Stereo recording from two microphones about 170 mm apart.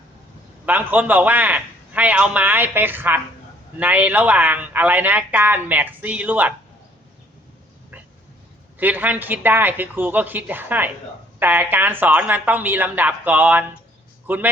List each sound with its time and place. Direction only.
0.6 s speech: 10° right (ahead or behind)
8.8 s speech: 10° right (ahead or behind)